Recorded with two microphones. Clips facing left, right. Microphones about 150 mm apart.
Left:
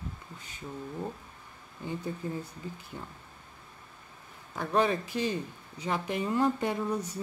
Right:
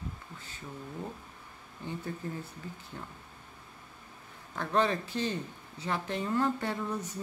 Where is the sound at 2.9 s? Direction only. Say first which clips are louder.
Even; 10° left (ahead or behind).